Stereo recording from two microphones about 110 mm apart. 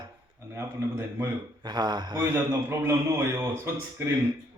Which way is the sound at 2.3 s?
25° right (ahead or behind).